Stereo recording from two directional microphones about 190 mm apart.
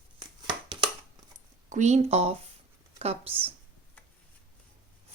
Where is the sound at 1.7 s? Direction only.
40° right (ahead or behind).